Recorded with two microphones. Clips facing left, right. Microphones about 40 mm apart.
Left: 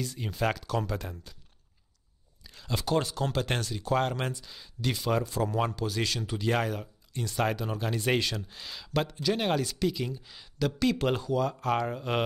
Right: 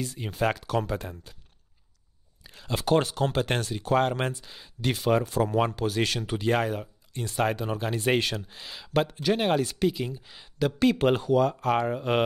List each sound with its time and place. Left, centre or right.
0.0 s speech: centre
2.4 s a sound: centre
2.9 s speech: right
3.3 s speech: centre
5.8 s speech: right
6.4 s speech: centre
9.1 s speech: right
9.4 s speech: centre; by 11.4 s right
11.4 s speech: centre
11.8 s speech: centre